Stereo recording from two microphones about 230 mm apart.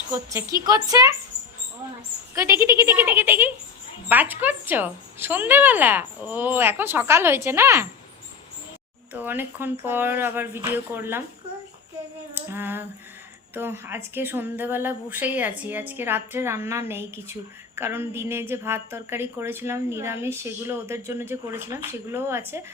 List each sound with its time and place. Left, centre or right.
0.1 s a woman's voice: centre
2.3 s a woman's voice: centre
9.2 s a woman's voice: centre
12.3 s a sound: centre
13.5 s a woman's voice: centre